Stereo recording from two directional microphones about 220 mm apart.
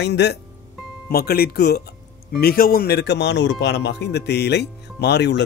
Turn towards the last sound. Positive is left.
turn(degrees=50)  # may be behind; listen again after turning